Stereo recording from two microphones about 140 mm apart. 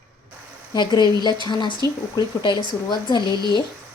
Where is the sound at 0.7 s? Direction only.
30° left (ahead or behind).